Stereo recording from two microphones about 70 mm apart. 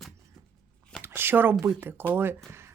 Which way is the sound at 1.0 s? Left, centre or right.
Right.